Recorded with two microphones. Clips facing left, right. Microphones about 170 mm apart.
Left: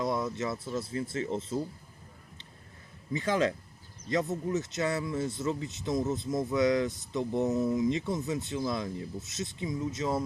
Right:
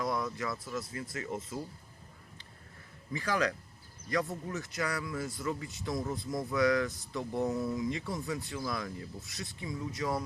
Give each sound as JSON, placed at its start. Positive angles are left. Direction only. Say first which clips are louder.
{"t": 0.0, "sound": "speech", "louder": "left 3 dB", "side_deg": 25}
{"t": 3.1, "sound": "speech", "louder": "left 4 dB", "side_deg": 20}